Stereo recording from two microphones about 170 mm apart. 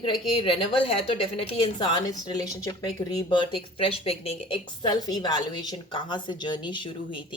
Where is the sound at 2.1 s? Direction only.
20° left (ahead or behind).